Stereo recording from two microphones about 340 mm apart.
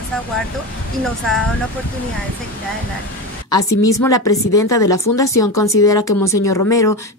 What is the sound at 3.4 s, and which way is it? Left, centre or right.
Speech, centre.